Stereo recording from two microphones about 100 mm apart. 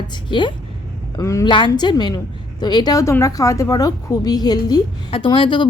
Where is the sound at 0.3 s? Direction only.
50° left (ahead or behind).